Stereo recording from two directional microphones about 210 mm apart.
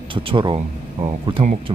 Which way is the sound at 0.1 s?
25° right (ahead or behind).